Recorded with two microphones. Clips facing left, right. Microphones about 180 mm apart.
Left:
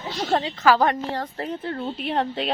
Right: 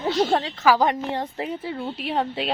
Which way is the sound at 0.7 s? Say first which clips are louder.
Even; 15° right (ahead or behind).